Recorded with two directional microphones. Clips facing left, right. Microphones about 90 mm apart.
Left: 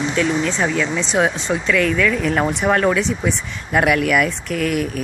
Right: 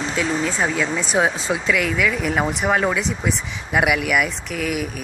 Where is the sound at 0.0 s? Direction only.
35° right (ahead or behind).